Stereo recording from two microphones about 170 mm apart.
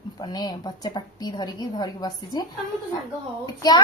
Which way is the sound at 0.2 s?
25° left (ahead or behind).